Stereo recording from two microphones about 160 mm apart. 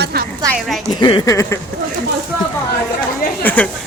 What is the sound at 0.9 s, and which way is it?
Speech, 30° left (ahead or behind).